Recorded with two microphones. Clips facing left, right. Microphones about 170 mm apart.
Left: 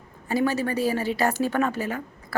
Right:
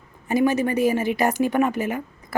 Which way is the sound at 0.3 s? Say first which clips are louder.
Right 4 dB; 15° right (ahead or behind).